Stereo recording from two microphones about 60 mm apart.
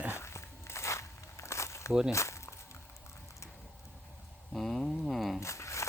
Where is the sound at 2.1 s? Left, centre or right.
Left.